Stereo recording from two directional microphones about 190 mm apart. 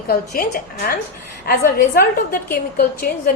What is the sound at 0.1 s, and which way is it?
A woman's voice, 50° left (ahead or behind).